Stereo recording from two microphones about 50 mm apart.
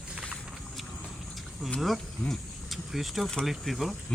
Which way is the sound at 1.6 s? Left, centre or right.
Centre.